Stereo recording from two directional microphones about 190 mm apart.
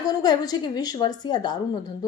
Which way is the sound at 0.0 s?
20° left (ahead or behind).